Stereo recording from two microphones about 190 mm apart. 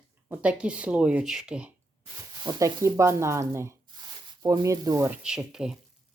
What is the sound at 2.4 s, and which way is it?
Speech, 15° right (ahead or behind).